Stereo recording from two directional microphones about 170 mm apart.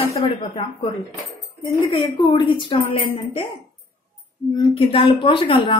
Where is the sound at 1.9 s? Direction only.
30° left (ahead or behind).